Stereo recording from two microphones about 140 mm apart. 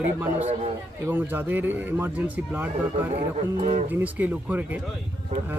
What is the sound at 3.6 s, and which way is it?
Speech, 55° right (ahead or behind).